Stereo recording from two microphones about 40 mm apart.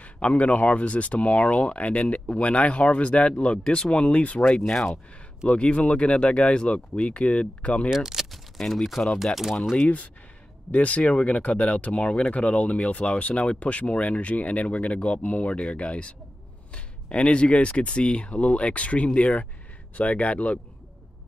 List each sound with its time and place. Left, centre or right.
0.0 s speech: left
4.5 s speech: centre
5.5 s speech: left
7.9 s speech: centre
8.5 s speech: centre
9.8 s speech: left